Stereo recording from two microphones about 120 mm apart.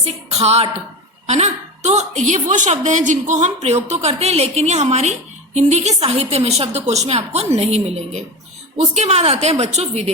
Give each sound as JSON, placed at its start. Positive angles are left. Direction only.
{"t": 0.0, "sound": "a woman's voice", "side_deg": -60}